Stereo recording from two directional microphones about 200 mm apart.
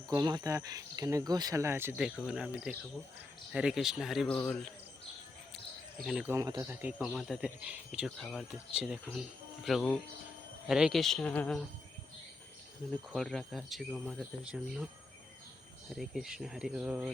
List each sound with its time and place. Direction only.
0.1 s speech: 20° right (ahead or behind); by 4.7 s 5° left (ahead or behind)
6.1 s speech: 5° right (ahead or behind)
6.3 s speech: 15° right (ahead or behind); by 11.6 s 5° left (ahead or behind)
13.1 s speech: centre (ahead or behind)
16.0 s speech: centre (ahead or behind)